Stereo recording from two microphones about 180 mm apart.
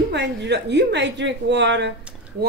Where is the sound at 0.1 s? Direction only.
70° right (ahead or behind).